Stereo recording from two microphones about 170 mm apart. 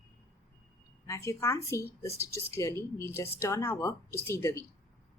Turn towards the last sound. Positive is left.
turn(degrees=15)  # may be behind; listen again after turning